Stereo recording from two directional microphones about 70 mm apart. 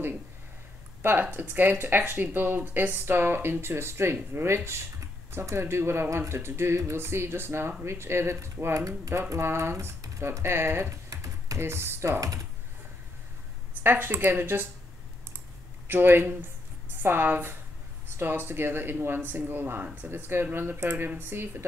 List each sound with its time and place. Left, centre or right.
1.0 s speech: right
13.8 s speech: right
15.9 s speech: right